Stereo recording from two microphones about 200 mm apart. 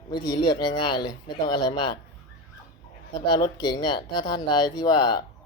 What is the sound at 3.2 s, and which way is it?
Speech, 20° left (ahead or behind).